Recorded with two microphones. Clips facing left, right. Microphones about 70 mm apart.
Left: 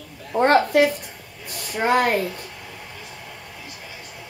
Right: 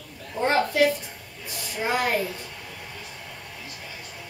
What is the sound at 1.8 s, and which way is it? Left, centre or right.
Speech, left.